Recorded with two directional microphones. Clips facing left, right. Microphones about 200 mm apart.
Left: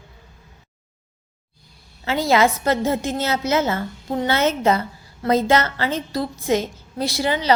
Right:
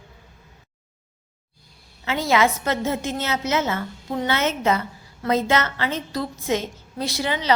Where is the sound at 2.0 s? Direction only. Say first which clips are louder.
Left 3 dB; 35° left (ahead or behind).